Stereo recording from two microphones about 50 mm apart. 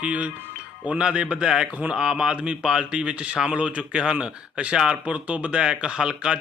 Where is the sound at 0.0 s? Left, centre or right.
Right.